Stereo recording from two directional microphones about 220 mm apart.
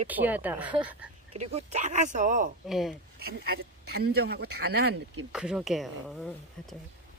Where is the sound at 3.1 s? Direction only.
45° right (ahead or behind).